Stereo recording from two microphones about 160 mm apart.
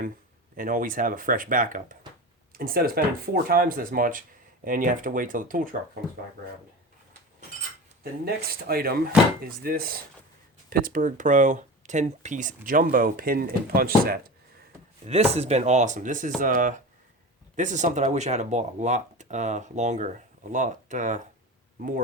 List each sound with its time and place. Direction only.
0.5 s speech: 55° right (ahead or behind)
8.2 s speech: 75° right (ahead or behind)
15.0 s speech: 40° right (ahead or behind); by 22.0 s 55° right (ahead or behind)